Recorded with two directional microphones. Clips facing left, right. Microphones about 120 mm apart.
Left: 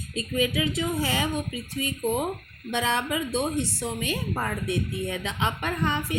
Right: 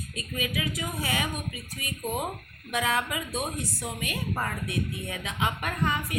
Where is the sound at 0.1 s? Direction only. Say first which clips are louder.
Left 8 dB; 30° left (ahead or behind).